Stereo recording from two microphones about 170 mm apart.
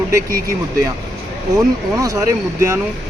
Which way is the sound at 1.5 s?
20° right (ahead or behind).